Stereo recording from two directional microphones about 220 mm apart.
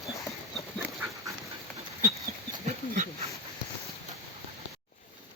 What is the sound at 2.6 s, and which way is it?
Dog, 35° right (ahead or behind).